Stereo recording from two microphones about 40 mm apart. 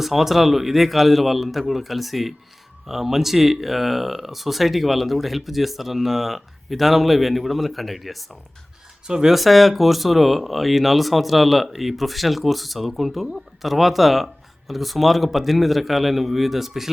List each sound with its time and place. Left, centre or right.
0.0 s speech: centre
9.0 s speech: centre
9.3 s speech: centre